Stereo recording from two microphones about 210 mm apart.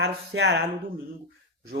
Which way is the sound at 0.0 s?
50° right (ahead or behind).